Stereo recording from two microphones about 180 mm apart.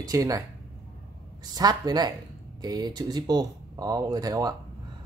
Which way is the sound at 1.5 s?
20° right (ahead or behind).